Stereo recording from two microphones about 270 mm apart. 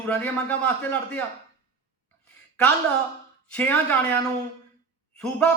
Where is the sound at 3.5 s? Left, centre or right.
Centre.